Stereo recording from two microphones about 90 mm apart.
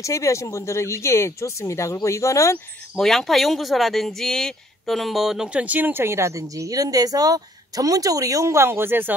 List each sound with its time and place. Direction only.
0.0 s speech: 35° left (ahead or behind)
3.0 s speech: 5° left (ahead or behind); by 9.1 s 25° right (ahead or behind)